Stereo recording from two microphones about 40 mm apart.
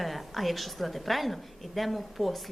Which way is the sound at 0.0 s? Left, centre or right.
Centre.